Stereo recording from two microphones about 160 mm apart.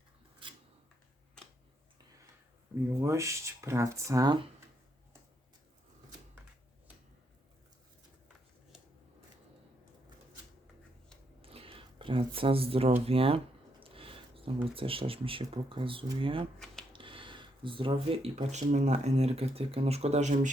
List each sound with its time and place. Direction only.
3.0 s speech: 20° right (ahead or behind)
11.4 s a sound: 35° right (ahead or behind)
13.1 s speech: 35° right (ahead or behind)